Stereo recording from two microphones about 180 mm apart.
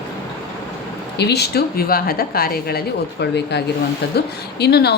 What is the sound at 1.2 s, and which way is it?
Speech, 65° left (ahead or behind).